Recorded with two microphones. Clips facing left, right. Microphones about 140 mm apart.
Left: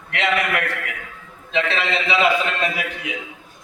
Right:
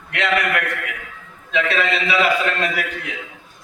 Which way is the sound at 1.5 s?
25° left (ahead or behind).